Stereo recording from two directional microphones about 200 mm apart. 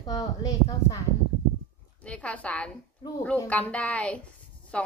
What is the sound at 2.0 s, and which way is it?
Speech, 5° left (ahead or behind).